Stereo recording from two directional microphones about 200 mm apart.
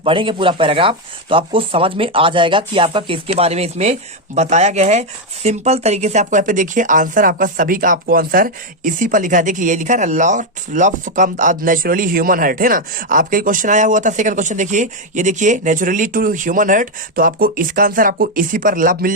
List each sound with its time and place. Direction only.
0.0 s speech: 25° right (ahead or behind); by 19.1 s 45° right (ahead or behind)